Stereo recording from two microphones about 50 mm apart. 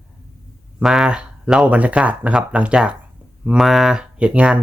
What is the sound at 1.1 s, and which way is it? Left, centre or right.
Speech, centre.